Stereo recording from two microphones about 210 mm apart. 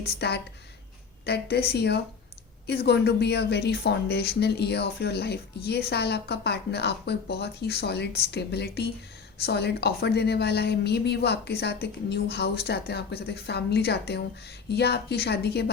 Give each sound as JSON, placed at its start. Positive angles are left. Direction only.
{"t": 0.0, "sound": "a woman's voice", "side_deg": 50}